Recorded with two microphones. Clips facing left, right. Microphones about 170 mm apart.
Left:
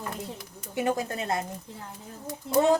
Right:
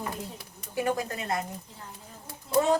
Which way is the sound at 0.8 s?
25° left (ahead or behind).